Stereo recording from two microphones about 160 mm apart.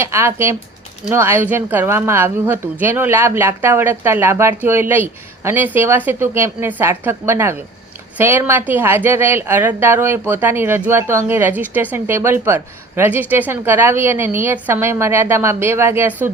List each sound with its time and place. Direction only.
0.0 s a woman's voice: 15° right (ahead or behind)